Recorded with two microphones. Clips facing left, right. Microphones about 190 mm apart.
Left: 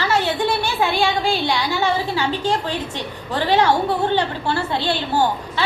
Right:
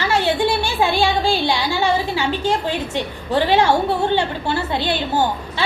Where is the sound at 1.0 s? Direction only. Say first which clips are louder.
Right 2 dB; 30° right (ahead or behind).